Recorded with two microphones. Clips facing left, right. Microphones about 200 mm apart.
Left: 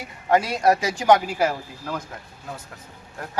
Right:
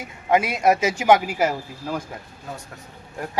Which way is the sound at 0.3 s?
20° right (ahead or behind).